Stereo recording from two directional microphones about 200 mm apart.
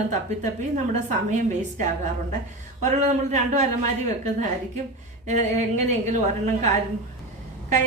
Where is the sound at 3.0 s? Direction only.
35° right (ahead or behind).